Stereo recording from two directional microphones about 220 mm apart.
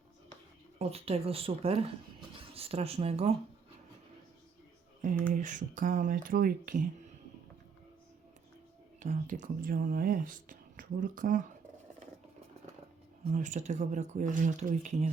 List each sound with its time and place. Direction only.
0.8 s speech: 25° right (ahead or behind)
5.3 s speech: 35° right (ahead or behind)
9.0 s speech: 35° right (ahead or behind)
13.3 s speech: 35° right (ahead or behind)